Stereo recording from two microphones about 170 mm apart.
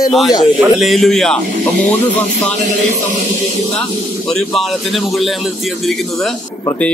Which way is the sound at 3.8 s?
Centre (ahead or behind).